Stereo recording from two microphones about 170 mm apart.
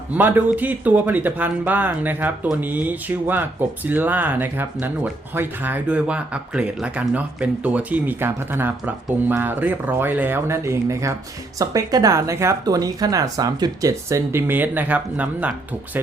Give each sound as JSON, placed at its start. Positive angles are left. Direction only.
{"t": 0.1, "sound": "speech", "side_deg": -10}